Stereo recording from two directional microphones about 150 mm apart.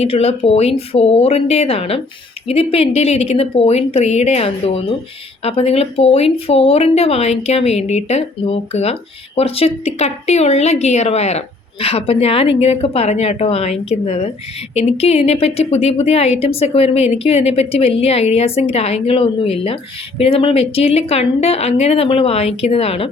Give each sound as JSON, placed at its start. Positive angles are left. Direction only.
{"t": 0.0, "sound": "speech", "side_deg": 45}